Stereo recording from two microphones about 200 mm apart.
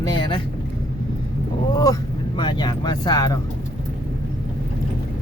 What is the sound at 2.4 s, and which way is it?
Speech, 20° left (ahead or behind).